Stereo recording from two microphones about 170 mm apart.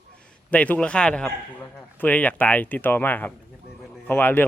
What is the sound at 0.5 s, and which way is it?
A man's voice, 10° left (ahead or behind).